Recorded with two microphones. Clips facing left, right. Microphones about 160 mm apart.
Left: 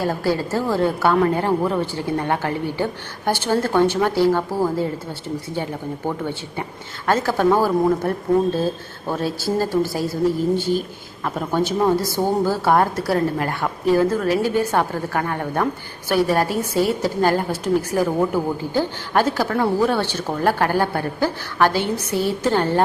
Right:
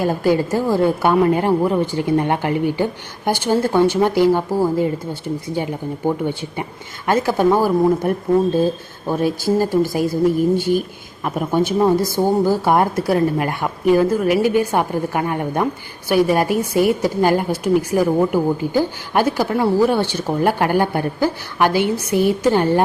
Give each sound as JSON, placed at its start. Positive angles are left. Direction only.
{"t": 0.0, "sound": "a woman's voice", "side_deg": -15}